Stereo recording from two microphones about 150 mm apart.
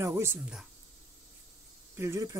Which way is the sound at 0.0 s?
15° right (ahead or behind).